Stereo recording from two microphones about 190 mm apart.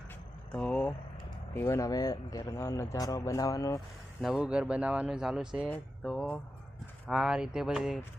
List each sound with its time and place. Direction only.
0.5 s speech: 5° left (ahead or behind)
4.2 s speech: 5° right (ahead or behind)